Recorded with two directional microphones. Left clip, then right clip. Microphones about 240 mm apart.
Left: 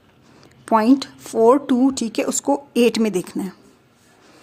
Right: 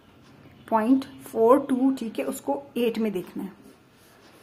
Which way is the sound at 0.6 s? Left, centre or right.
Left.